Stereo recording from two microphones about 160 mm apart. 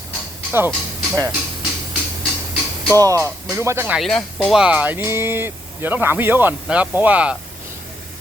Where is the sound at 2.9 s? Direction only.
20° right (ahead or behind).